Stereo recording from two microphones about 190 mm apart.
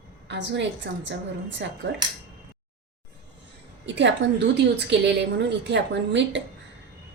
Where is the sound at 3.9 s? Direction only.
70° right (ahead or behind).